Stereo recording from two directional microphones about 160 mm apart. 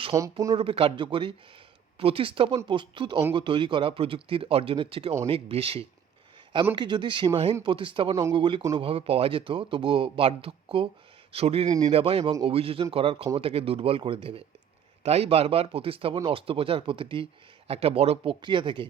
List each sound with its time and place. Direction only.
0.1 s speech: 20° right (ahead or behind)
0.5 s speech: 35° right (ahead or behind)